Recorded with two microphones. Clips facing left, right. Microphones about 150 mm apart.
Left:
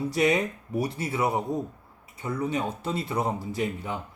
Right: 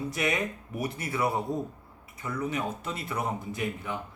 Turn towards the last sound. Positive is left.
turn(degrees=30)  # may be behind; listen again after turning